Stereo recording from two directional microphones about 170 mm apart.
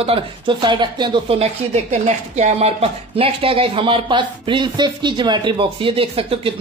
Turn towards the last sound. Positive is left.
turn(degrees=-35)  # may be behind; listen again after turning